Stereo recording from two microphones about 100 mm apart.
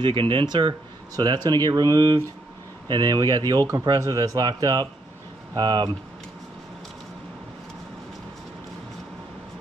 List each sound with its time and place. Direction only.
0.0 s speech: 55° right (ahead or behind)
1.1 s a man's voice: 45° right (ahead or behind)